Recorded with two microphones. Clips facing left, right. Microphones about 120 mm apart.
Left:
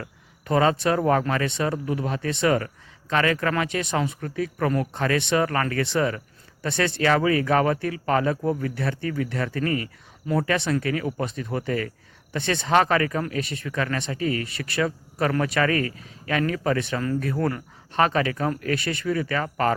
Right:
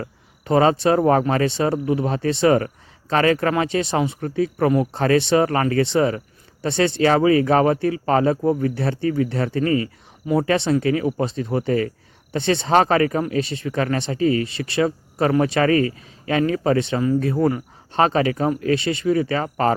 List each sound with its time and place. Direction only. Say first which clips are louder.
0.0 s speech: right 6 dB; 30° right (ahead or behind)
17.3 s speech: right 6 dB; 10° right (ahead or behind)
17.9 s speech: right 4 dB; 30° right (ahead or behind)